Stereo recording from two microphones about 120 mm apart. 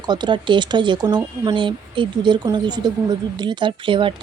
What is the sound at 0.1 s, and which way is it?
Speech, 40° right (ahead or behind).